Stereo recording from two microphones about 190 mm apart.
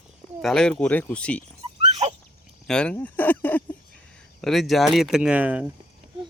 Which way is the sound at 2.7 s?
5° left (ahead or behind).